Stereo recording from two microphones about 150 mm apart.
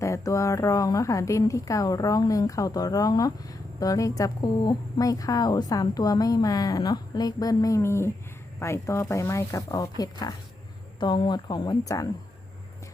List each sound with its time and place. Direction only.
0.0 s a woman's voice: 20° left (ahead or behind)